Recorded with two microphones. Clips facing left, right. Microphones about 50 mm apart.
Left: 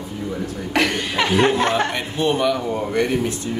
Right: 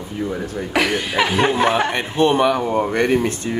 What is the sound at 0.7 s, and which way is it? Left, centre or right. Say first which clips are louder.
Speech: right 1 dB; centre.